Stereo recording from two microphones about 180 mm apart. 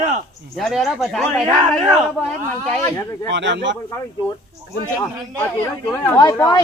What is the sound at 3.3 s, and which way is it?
Speech, 80° right.